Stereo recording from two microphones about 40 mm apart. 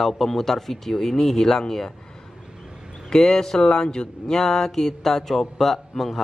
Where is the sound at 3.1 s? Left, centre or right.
Centre.